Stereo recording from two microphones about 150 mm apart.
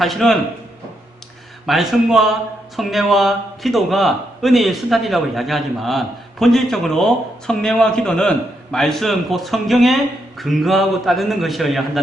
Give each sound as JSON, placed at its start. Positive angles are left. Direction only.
{"t": 0.0, "sound": "a man's voice", "side_deg": 0}
{"t": 1.6, "sound": "a man's voice", "side_deg": 0}